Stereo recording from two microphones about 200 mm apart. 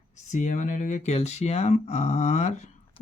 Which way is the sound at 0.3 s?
40° left (ahead or behind).